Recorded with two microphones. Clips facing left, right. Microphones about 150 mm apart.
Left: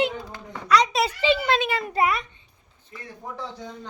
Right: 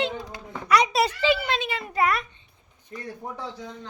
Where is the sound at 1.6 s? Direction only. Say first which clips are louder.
Left 5 dB; 45° left (ahead or behind).